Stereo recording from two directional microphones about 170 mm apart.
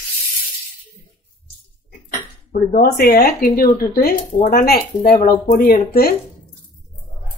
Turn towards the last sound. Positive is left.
turn(degrees=60)  # may be behind; listen again after turning